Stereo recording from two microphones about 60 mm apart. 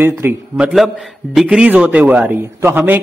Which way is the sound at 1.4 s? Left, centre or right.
Centre.